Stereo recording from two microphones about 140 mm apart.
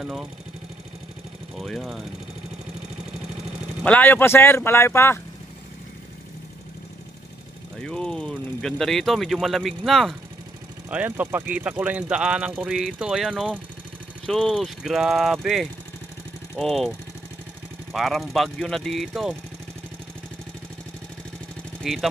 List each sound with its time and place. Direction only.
0.0 s speech: 5° right (ahead or behind)
1.6 s speech: centre (ahead or behind)
3.8 s speech: 10° left (ahead or behind)
7.8 s speech: 5° left (ahead or behind)
10.9 s speech: 10° right (ahead or behind)
17.9 s speech: centre (ahead or behind)
21.8 s speech: centre (ahead or behind)